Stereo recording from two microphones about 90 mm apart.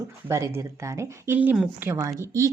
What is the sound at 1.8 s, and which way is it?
Speech, 20° right (ahead or behind).